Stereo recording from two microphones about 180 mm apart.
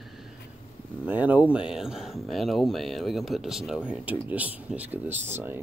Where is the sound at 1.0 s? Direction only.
10° right (ahead or behind).